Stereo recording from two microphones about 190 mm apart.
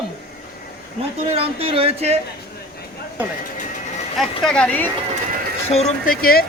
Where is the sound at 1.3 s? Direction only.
30° right (ahead or behind).